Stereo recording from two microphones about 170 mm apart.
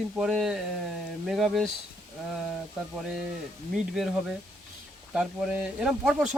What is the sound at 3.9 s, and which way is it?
Speech, centre (ahead or behind).